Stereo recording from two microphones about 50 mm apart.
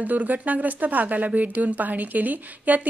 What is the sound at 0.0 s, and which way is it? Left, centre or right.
A woman's voice, right.